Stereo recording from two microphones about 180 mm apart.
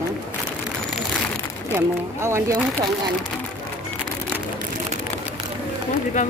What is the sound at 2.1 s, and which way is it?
Speech, 15° right (ahead or behind).